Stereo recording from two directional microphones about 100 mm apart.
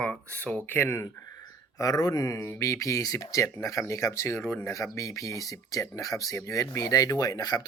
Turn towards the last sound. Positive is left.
turn(degrees=45)  # may be behind; listen again after turning